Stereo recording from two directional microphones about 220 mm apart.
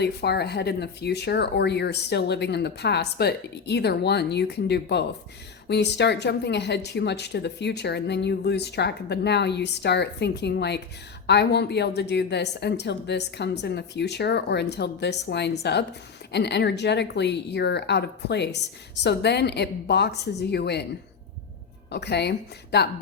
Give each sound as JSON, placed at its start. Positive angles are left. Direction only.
{"t": 0.0, "sound": "speech", "side_deg": 50}
{"t": 21.8, "sound": "speech", "side_deg": 50}